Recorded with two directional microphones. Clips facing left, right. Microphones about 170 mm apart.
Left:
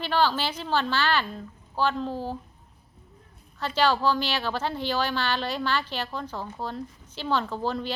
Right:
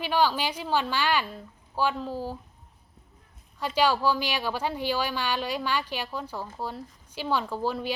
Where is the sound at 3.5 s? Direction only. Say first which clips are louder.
Even; 10° right (ahead or behind).